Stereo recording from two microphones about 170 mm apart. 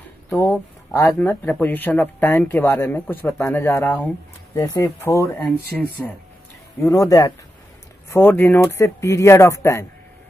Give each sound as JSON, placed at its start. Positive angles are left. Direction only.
{"t": 0.4, "sound": "speech", "side_deg": 15}
{"t": 5.7, "sound": "speech", "side_deg": 5}
{"t": 6.8, "sound": "speech", "side_deg": 20}